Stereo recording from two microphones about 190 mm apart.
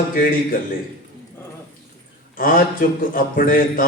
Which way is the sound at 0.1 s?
45° left (ahead or behind).